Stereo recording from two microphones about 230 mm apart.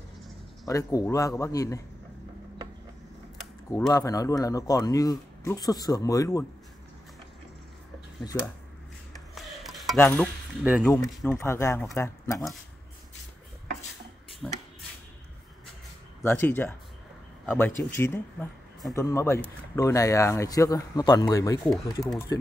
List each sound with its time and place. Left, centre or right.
0.7 s speech: centre
3.7 s speech: centre
8.3 s speech: centre
9.3 s a sound: centre
9.9 s stir: centre
11.2 s speech: centre
14.4 s speech: centre
16.2 s speech: centre